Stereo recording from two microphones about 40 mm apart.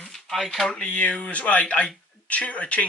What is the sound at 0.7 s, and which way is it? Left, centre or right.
Speech, left.